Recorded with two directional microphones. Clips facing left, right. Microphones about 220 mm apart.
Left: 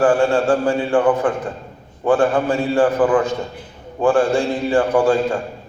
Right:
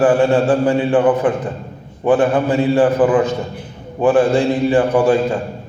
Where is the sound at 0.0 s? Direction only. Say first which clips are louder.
Right 2 dB; 20° right (ahead or behind).